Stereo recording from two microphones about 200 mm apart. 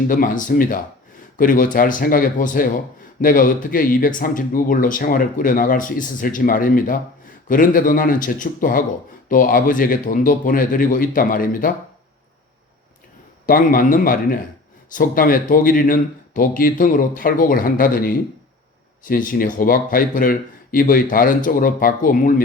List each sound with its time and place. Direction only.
0.1 s a man's voice: 45° left (ahead or behind)
13.4 s a man's voice: 45° left (ahead or behind)